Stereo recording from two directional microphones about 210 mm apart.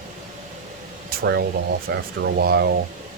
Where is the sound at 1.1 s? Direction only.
50° right (ahead or behind).